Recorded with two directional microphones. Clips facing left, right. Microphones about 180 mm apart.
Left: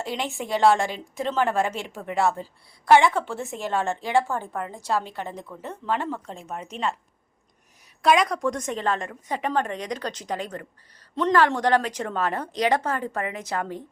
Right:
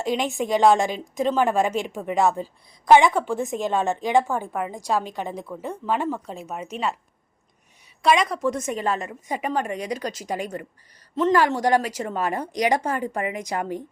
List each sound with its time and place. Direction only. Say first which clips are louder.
0.0 s a woman's voice: right 5 dB; 15° right (ahead or behind)
8.0 s a woman's voice: even; centre (ahead or behind)